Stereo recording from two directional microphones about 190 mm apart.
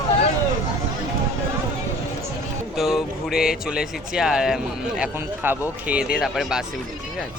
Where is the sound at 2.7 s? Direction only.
Centre (ahead or behind).